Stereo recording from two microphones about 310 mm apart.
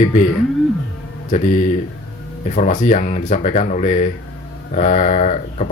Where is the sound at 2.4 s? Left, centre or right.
Left.